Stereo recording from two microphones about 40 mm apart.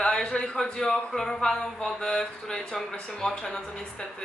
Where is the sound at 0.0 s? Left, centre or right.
Left.